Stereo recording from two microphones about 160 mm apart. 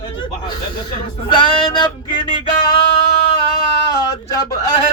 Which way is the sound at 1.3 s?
30° left (ahead or behind).